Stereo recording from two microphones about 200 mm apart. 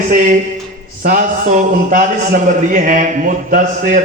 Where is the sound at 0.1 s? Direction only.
40° right (ahead or behind).